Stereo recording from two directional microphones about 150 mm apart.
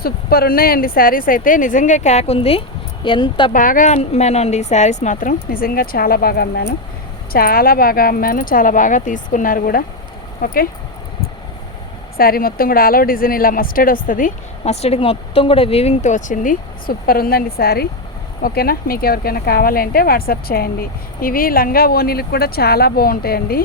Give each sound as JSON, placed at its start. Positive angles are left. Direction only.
{"t": 0.0, "sound": "speech", "side_deg": 90}
{"t": 3.5, "sound": "speech", "side_deg": 65}
{"t": 7.3, "sound": "speech", "side_deg": 80}
{"t": 12.1, "sound": "speech", "side_deg": 80}
{"t": 14.6, "sound": "speech", "side_deg": 45}